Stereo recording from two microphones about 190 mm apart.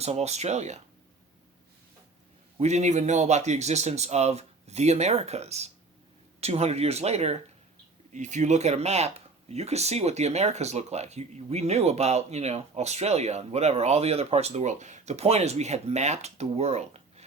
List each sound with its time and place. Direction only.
0.0 s speech: 35° right (ahead or behind)
2.6 s speech: 35° right (ahead or behind)